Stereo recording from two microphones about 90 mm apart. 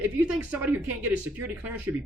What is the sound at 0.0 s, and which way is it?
Speech, 15° right (ahead or behind).